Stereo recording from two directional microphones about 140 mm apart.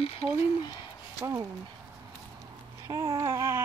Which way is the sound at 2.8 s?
25° right (ahead or behind).